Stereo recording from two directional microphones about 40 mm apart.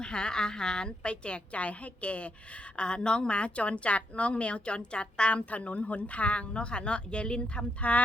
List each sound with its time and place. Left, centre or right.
0.0 s a woman's voice: left
5.5 s speech: left